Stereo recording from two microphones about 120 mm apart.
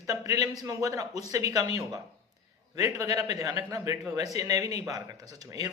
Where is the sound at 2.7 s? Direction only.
30° right (ahead or behind).